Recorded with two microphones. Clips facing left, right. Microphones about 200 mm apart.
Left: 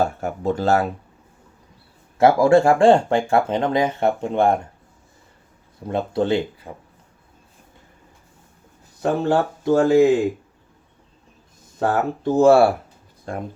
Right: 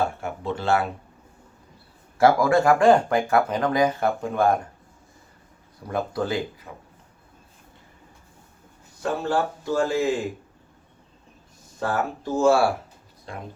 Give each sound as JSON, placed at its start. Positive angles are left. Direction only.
{"t": 0.0, "sound": "speech", "side_deg": 40}
{"t": 2.1, "sound": "speech", "side_deg": 25}
{"t": 5.9, "sound": "speech", "side_deg": 25}
{"t": 9.0, "sound": "speech", "side_deg": 55}
{"t": 11.8, "sound": "speech", "side_deg": 60}
{"t": 13.3, "sound": "speech", "side_deg": 45}